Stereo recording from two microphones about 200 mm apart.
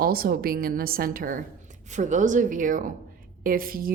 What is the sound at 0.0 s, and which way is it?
A woman's voice, 50° right (ahead or behind).